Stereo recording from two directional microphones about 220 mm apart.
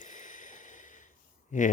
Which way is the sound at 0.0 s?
35° left (ahead or behind).